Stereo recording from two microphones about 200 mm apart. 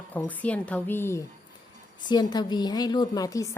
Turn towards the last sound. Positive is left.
turn(degrees=15)  # may be behind; listen again after turning